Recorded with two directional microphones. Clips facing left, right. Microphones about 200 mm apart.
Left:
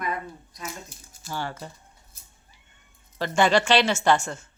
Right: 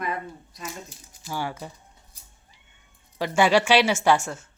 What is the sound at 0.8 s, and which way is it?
Speech, 15° right (ahead or behind).